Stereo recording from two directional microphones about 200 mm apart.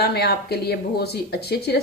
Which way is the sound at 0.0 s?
55° left (ahead or behind).